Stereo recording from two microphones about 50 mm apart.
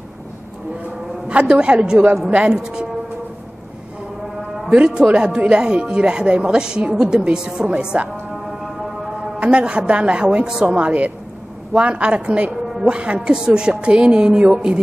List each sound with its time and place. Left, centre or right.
1.2 s speech: right
4.7 s speech: centre
8.6 s music: centre
9.4 s speech: right
10.9 s speech: right